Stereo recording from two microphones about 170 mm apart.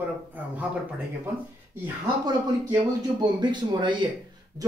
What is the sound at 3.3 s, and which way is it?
Speech, 25° right (ahead or behind).